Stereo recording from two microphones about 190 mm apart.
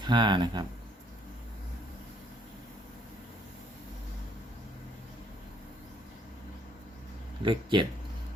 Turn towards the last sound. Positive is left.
turn(degrees=-25)  # may be behind; listen again after turning